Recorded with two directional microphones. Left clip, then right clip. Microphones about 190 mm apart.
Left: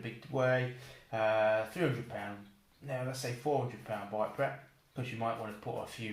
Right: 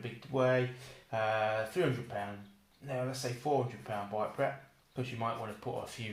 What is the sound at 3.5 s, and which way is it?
Speech, 30° right (ahead or behind).